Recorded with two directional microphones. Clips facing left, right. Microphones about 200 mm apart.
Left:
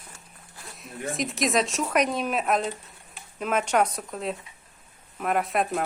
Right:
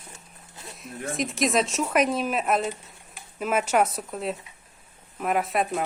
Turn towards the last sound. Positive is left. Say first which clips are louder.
# even
turn(degrees=0)  # may be behind; listen again after turning